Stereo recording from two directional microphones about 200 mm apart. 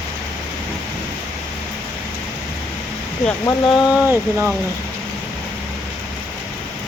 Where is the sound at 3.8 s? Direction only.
5° right (ahead or behind).